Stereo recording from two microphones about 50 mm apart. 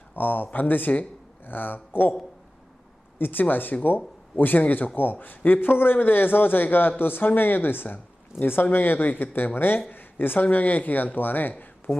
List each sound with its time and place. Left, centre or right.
0.2 s speech: left
3.2 s a man's voice: left